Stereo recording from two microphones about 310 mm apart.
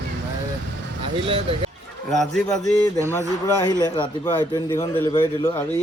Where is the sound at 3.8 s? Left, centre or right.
Centre.